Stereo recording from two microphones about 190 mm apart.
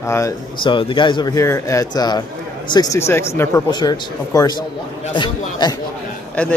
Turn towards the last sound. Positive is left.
turn(degrees=5)  # may be behind; listen again after turning